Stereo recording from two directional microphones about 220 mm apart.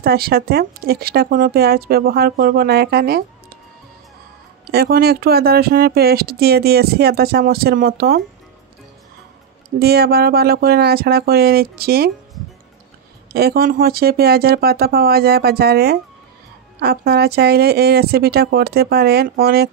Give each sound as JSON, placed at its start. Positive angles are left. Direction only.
{"t": 0.0, "sound": "speech", "side_deg": -45}
{"t": 4.6, "sound": "speech", "side_deg": -45}
{"t": 9.8, "sound": "speech", "side_deg": -45}
{"t": 13.3, "sound": "speech", "side_deg": -45}